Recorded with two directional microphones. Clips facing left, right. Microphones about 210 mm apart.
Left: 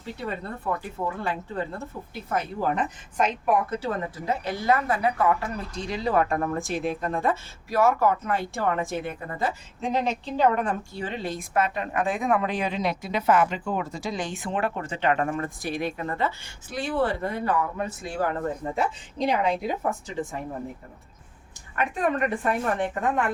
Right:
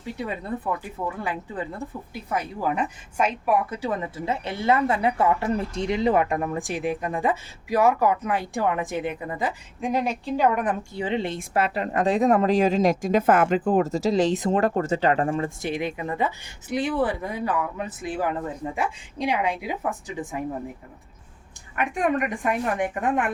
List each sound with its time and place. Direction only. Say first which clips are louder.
0.2 s a woman's voice: right 3 dB; 15° right (ahead or behind)
21.8 s a woman's voice: right 1 dB; 10° right (ahead or behind)